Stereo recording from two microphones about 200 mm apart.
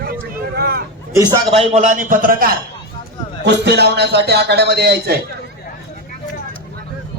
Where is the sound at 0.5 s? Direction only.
50° right (ahead or behind).